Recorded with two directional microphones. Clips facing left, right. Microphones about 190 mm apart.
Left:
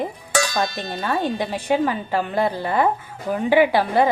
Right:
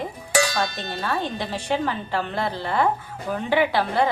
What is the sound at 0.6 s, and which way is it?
Speech, 10° left (ahead or behind).